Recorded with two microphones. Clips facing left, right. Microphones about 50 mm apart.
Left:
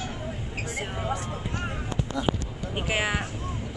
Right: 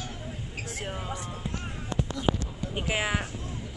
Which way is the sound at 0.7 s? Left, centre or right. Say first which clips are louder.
Left 5 dB; centre.